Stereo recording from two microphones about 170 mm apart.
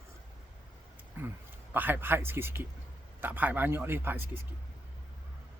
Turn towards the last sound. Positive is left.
turn(degrees=-15)  # may be behind; listen again after turning